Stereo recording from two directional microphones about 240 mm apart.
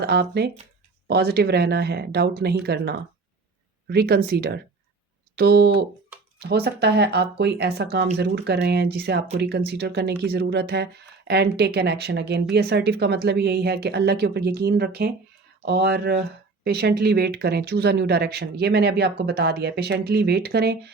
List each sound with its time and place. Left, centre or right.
0.0 s speech: right